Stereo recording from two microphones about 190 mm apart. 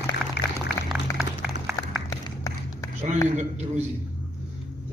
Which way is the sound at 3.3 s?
35° right (ahead or behind).